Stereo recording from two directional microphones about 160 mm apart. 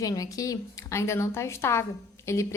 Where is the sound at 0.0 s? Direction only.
20° left (ahead or behind).